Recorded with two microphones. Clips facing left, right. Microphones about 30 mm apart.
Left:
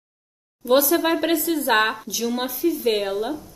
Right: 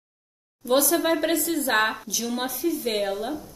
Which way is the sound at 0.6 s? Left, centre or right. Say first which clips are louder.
Left 3 dB; centre.